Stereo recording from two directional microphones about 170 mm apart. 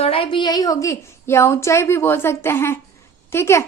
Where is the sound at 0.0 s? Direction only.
35° left (ahead or behind); by 3.7 s 15° left (ahead or behind).